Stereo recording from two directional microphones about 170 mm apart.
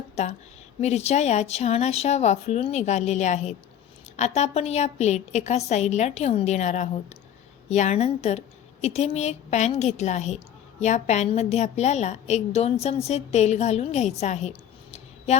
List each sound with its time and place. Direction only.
0.2 s a woman's voice: 40° left (ahead or behind)